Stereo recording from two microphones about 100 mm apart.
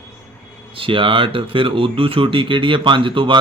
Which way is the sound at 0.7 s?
60° right (ahead or behind).